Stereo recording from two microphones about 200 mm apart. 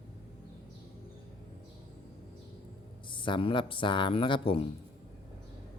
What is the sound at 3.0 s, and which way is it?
Speech, 25° left (ahead or behind).